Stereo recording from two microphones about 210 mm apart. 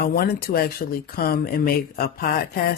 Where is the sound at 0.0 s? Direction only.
45° left (ahead or behind).